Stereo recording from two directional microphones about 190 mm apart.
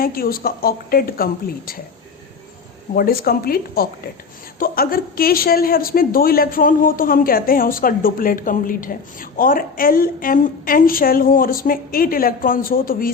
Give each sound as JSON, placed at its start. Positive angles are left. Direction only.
{"t": 0.0, "sound": "a woman's voice", "side_deg": 50}
{"t": 2.9, "sound": "a woman's voice", "side_deg": 50}